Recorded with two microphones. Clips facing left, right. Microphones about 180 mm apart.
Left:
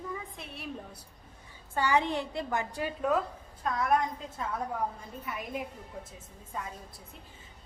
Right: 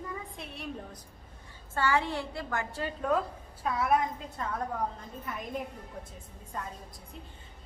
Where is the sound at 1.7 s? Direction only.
15° left (ahead or behind).